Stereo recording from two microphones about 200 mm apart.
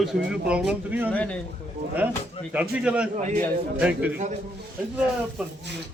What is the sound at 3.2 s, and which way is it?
Speech, 35° right (ahead or behind).